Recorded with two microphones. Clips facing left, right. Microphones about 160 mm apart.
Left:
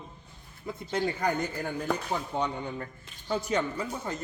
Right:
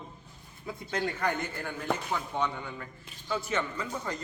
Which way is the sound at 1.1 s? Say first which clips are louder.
Left 2 dB; 40° left (ahead or behind).